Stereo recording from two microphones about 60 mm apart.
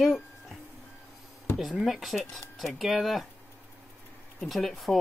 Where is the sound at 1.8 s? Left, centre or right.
Centre.